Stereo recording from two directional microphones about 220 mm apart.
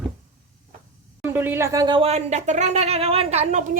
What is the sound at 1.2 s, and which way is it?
Speech, 10° right (ahead or behind).